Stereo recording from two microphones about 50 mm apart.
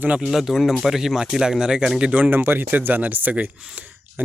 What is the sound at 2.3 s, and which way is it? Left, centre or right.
Speech, right.